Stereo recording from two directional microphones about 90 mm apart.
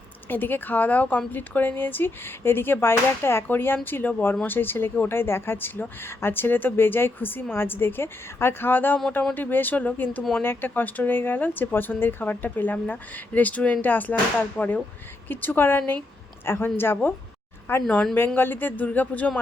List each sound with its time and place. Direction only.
0.3 s speech: 20° left (ahead or behind)